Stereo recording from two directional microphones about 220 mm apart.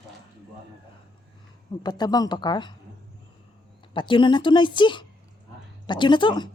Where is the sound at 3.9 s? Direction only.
20° left (ahead or behind).